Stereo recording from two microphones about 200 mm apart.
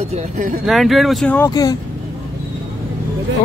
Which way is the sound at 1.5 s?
15° left (ahead or behind).